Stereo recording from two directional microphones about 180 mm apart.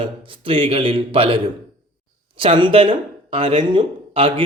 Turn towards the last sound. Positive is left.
turn(degrees=-30)  # may be behind; listen again after turning